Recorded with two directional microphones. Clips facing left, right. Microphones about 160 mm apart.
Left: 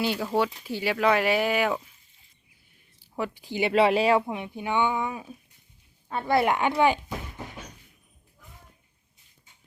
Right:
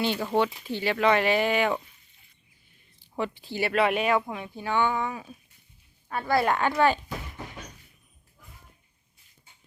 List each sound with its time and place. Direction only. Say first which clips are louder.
0.0 s speech: even; 5° left (ahead or behind)
3.0 s speech: right 1 dB; 5° left (ahead or behind)